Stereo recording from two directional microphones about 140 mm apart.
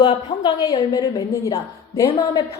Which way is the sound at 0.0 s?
30° left (ahead or behind).